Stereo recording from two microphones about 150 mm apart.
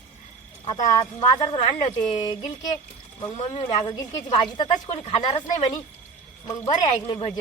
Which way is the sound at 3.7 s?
30° left (ahead or behind).